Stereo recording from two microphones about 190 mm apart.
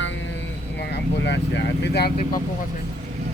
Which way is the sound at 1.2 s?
65° left (ahead or behind).